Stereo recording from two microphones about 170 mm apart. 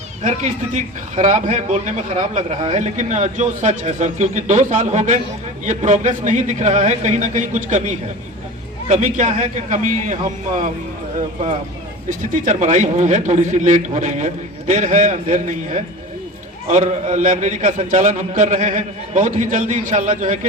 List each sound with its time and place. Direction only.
0.3 s a man's voice: 45° right (ahead or behind)
12.5 s a man's voice: 45° right (ahead or behind)